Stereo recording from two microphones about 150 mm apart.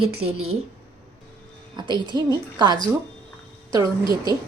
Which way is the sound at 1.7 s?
30° right (ahead or behind).